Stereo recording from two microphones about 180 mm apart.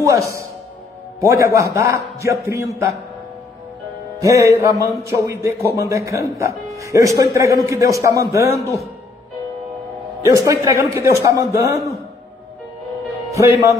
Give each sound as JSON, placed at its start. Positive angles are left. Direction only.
{"t": 0.0, "sound": "speech", "side_deg": -15}
{"t": 4.2, "sound": "speech", "side_deg": -15}
{"t": 10.2, "sound": "speech", "side_deg": -15}
{"t": 13.3, "sound": "speech", "side_deg": -15}